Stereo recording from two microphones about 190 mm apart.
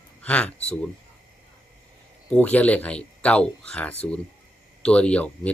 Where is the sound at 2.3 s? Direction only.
5° left (ahead or behind).